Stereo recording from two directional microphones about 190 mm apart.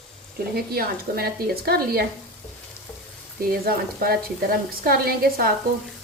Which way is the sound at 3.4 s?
50° right (ahead or behind).